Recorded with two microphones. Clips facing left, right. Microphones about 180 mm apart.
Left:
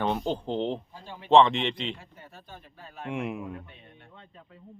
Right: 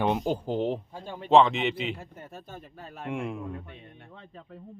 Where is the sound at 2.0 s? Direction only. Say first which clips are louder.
Right 6 dB; 45° right (ahead or behind).